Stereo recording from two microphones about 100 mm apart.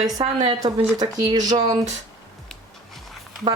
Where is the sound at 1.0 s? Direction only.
40° right (ahead or behind).